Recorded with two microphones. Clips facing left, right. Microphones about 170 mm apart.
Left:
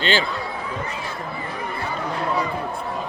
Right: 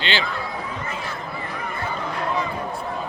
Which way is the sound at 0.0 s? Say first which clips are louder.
Left 4 dB; 45° left (ahead or behind).